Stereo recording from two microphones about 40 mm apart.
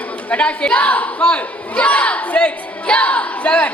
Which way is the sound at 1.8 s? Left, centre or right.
Left.